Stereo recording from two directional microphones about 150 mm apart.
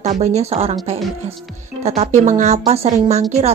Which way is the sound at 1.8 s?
45° right (ahead or behind).